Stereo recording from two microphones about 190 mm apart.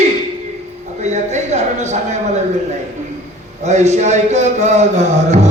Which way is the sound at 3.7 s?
35° right (ahead or behind).